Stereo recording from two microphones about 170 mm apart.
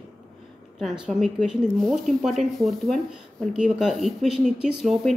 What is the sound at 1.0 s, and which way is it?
Speech, 5° right (ahead or behind).